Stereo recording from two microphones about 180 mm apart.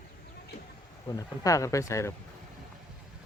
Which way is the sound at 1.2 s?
20° left (ahead or behind).